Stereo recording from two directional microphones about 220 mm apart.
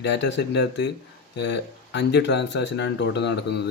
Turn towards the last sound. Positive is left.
turn(degrees=50)  # may be behind; listen again after turning